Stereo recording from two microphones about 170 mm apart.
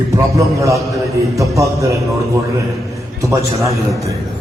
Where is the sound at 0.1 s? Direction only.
20° right (ahead or behind).